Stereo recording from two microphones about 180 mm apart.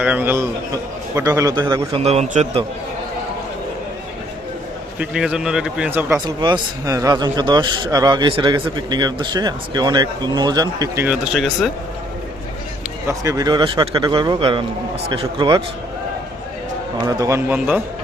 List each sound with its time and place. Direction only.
0.0 s a man's voice: 10° right (ahead or behind); by 2.0 s 25° right (ahead or behind)
2.0 s a man's voice: 35° right (ahead or behind)
4.9 s speech: 5° right (ahead or behind)
6.1 s speech: 25° right (ahead or behind)
11.0 s speech: 5° right (ahead or behind)
13.1 s speech: 20° right (ahead or behind)
17.1 s a man's voice: 20° right (ahead or behind)